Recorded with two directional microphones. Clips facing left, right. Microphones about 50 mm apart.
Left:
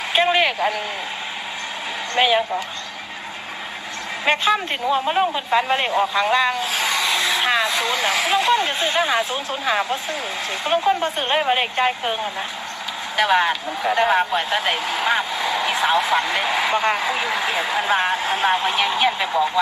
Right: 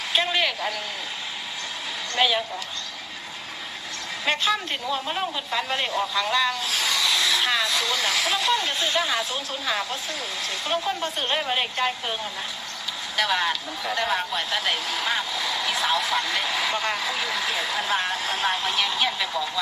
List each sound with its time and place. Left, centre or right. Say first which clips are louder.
0.1 s speech: left 6 dB; left
2.1 s speech: left 5 dB; left
4.3 s speech: left 5 dB; left